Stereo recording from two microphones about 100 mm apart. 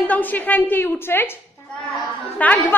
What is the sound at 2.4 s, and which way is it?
Speech, 15° left (ahead or behind).